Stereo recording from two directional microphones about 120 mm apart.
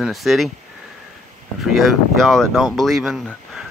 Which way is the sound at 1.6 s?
Centre (ahead or behind).